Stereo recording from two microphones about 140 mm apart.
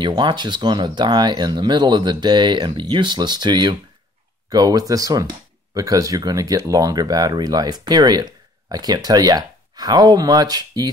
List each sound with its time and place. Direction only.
0.0 s speech: 35° right (ahead or behind)